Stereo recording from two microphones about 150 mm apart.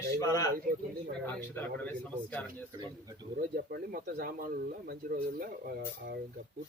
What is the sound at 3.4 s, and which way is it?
Speech, 80° right.